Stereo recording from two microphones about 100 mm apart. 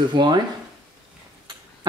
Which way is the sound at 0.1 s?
50° right (ahead or behind).